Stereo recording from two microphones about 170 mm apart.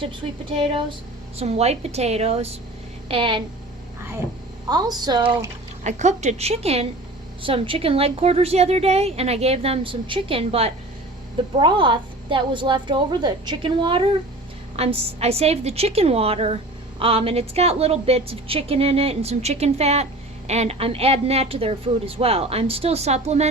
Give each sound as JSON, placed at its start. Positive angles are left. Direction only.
{"t": 0.5, "sound": "a woman's voice", "side_deg": -30}
{"t": 4.7, "sound": "a woman's voice", "side_deg": -25}
{"t": 5.8, "sound": "a woman's voice", "side_deg": -45}